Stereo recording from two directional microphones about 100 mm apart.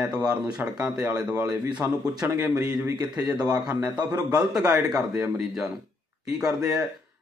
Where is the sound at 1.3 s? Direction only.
30° right (ahead or behind).